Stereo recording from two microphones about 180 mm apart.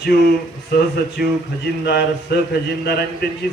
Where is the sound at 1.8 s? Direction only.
65° left (ahead or behind).